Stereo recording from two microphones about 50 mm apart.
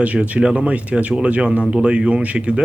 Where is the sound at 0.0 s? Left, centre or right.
Right.